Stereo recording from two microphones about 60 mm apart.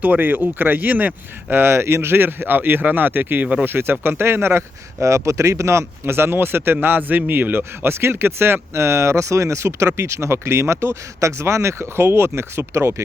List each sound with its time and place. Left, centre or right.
0.0 s speech: right
3.4 s speech: right
3.7 s speech: right
5.0 s speech: right